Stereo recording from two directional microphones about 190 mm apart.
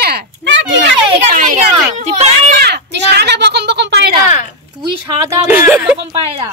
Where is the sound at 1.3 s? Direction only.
45° right (ahead or behind).